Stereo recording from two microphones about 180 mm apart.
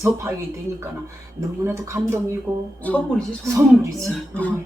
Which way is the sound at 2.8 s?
5° left (ahead or behind).